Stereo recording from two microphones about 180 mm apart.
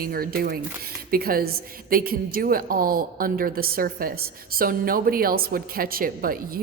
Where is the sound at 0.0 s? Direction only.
55° right (ahead or behind).